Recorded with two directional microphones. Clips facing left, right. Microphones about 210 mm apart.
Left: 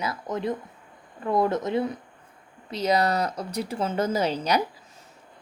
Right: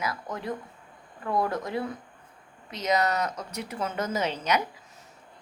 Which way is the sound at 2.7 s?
30° left (ahead or behind).